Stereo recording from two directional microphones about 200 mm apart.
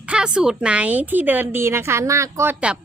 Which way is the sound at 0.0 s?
5° right (ahead or behind).